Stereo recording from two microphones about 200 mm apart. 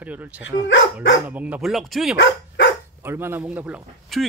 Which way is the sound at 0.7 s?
70° left (ahead or behind).